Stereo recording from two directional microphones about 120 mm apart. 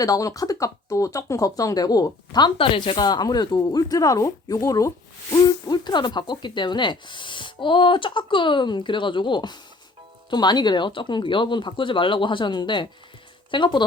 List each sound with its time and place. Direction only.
0.0 s speech: 30° left (ahead or behind)